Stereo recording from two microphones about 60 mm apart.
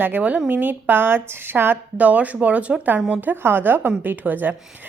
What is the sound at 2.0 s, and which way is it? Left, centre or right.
A woman's voice, right.